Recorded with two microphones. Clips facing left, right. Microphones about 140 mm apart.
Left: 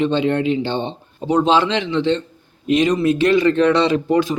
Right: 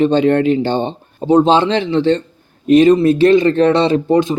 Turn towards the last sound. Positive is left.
turn(degrees=-25)  # may be behind; listen again after turning